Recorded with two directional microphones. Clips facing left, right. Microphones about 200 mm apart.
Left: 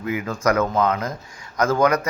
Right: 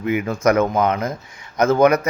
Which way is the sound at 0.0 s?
25° right (ahead or behind).